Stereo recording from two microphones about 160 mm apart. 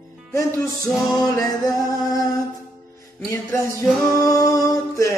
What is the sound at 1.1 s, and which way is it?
Music, 20° left (ahead or behind).